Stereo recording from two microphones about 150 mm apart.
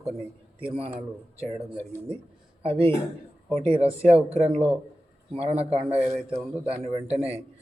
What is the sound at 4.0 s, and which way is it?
Speech, 45° right (ahead or behind).